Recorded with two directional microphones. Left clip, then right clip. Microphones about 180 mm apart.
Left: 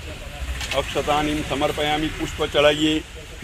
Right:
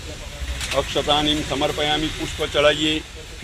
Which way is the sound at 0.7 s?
35° right (ahead or behind).